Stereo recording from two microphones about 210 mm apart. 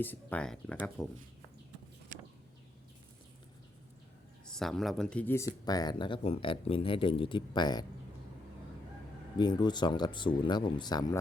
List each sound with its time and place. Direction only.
0.0 s speech: 10° left (ahead or behind)
4.5 s speech: centre (ahead or behind); by 7.9 s 20° left (ahead or behind)
9.4 s speech: 20° left (ahead or behind)